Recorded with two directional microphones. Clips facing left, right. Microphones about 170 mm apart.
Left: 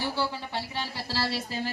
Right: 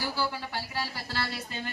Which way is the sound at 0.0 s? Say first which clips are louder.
Left 2 dB; 25° left (ahead or behind).